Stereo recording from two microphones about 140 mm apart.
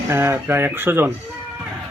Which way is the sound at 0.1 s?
15° right (ahead or behind).